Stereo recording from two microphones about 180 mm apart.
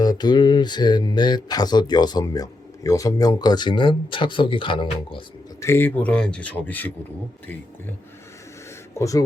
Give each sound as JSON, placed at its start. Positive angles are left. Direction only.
{"t": 0.0, "sound": "speech", "side_deg": 25}
{"t": 5.5, "sound": "speech", "side_deg": 15}
{"t": 9.0, "sound": "speech", "side_deg": 20}